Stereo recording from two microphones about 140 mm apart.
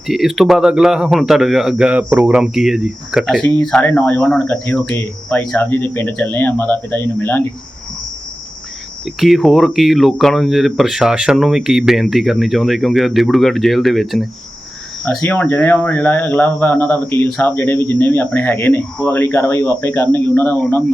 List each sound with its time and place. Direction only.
0.1 s a man's voice: centre (ahead or behind); by 7.4 s 15° left (ahead or behind)
9.0 s a man's voice: centre (ahead or behind)
15.2 s speech: 10° left (ahead or behind)